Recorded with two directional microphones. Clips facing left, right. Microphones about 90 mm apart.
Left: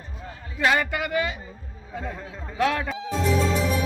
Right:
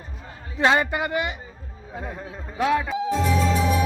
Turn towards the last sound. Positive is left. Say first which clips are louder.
# right 2 dB
turn(degrees=-10)  # may be behind; listen again after turning